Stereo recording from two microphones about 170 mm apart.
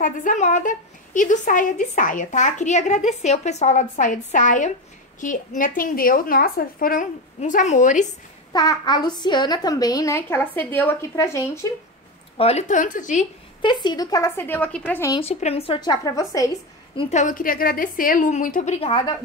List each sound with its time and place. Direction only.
0.0 s a woman's voice: 50° left (ahead or behind)
7.3 s a woman's voice: 45° left (ahead or behind)
8.5 s a child's voice: 25° left (ahead or behind)
12.4 s a woman's voice: 40° left (ahead or behind)
13.6 s a child's voice: 25° left (ahead or behind)
15.1 s a child's voice: 35° left (ahead or behind); by 16.4 s 20° left (ahead or behind)
17.1 s a woman's voice: 50° left (ahead or behind); by 19.1 s 30° left (ahead or behind)